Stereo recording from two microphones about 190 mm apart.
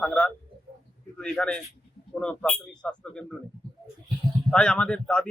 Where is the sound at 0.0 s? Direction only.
5° left (ahead or behind).